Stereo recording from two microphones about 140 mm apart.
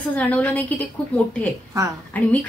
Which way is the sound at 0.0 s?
10° left (ahead or behind).